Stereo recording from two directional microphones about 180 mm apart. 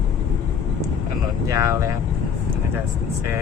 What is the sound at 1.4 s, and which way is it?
Speech, 20° right (ahead or behind).